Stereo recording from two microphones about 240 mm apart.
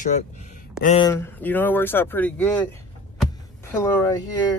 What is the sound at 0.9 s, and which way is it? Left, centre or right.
Speech, centre.